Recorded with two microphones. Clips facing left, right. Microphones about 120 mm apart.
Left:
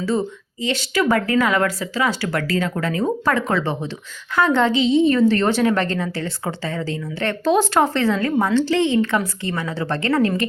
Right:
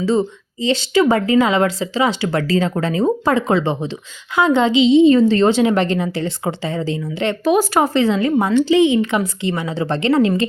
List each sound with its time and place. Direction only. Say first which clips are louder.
0.0 s speech: right 4 dB; 25° right (ahead or behind)